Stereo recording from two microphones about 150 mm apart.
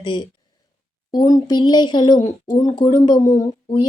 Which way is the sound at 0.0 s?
35° left (ahead or behind).